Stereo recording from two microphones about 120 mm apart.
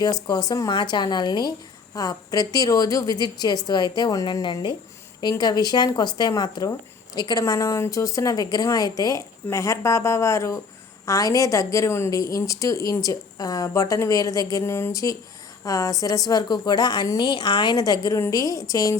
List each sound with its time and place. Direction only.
0.0 s a woman's voice: 35° left (ahead or behind)